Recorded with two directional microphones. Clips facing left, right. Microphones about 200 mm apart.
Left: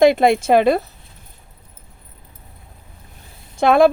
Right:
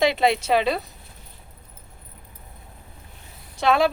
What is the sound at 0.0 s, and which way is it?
Speech, 50° left (ahead or behind).